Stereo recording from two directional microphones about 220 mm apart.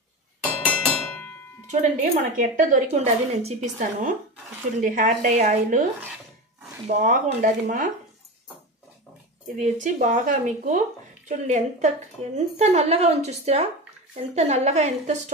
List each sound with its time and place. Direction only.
0.7 s a sound: 5° left (ahead or behind)
1.7 s a woman's voice: 35° right (ahead or behind)
6.9 s a woman's voice: 30° right (ahead or behind)
9.6 s a woman's voice: 35° right (ahead or behind)